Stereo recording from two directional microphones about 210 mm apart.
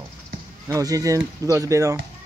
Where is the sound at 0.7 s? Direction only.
15° right (ahead or behind).